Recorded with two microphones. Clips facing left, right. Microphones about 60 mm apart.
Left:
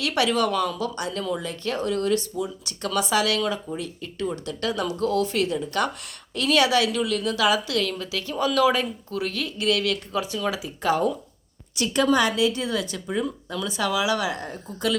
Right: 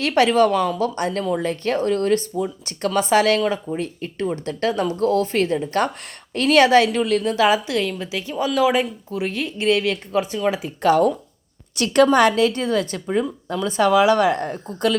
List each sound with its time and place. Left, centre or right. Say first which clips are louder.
0.0 s speech: right 6 dB; right
10.6 s a woman's voice: right 7 dB; right